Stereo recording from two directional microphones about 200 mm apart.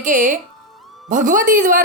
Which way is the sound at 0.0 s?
40° right (ahead or behind).